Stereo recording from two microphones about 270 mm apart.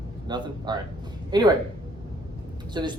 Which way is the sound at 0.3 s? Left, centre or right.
Centre.